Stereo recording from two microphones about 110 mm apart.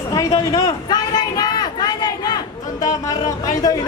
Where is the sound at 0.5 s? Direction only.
35° left (ahead or behind).